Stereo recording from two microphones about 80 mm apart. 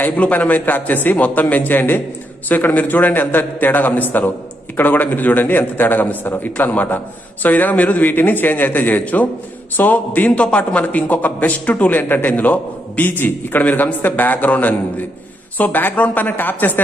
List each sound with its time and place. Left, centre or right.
0.1 s a man's voice: centre